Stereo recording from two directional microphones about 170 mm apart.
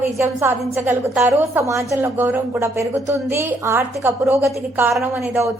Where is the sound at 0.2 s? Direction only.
15° right (ahead or behind).